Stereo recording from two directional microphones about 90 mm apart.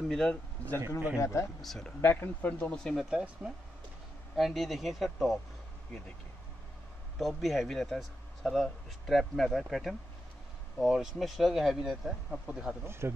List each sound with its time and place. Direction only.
0.1 s speech: 5° left (ahead or behind)
1.2 s speech: 35° left (ahead or behind)
1.6 s speech: 5° left (ahead or behind)
2.0 s speech: 20° left (ahead or behind)
3.1 s speech: 10° right (ahead or behind)
7.2 s speech: centre (ahead or behind)
12.8 s speech: 30° right (ahead or behind)